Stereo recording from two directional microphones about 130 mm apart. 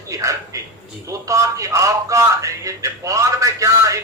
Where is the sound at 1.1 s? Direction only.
25° right (ahead or behind).